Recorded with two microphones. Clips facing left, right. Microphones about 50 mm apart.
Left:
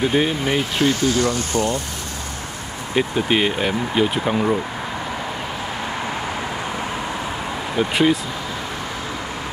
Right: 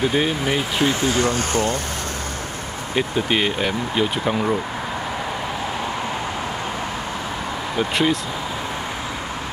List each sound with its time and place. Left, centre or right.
0.0 s speech: centre
1.0 s speech: right
2.9 s speech: centre
7.7 s speech: centre